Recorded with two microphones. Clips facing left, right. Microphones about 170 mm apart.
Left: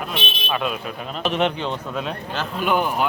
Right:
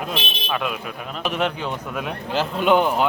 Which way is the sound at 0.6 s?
25° left (ahead or behind).